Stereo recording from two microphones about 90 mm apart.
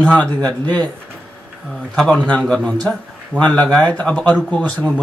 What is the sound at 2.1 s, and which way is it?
Speech, 15° left (ahead or behind).